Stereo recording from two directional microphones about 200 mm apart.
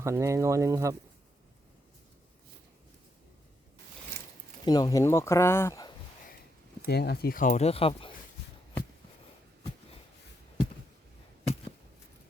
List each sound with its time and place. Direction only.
0.0 s speech: 15° right (ahead or behind)
4.6 s speech: 20° left (ahead or behind)
6.8 s speech: 55° left (ahead or behind); by 8.1 s 25° left (ahead or behind)